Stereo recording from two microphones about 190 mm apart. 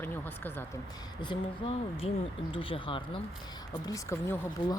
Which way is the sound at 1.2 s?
25° left (ahead or behind).